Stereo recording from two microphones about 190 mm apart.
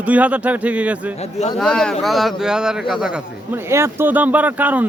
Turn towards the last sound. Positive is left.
turn(degrees=-10)  # may be behind; listen again after turning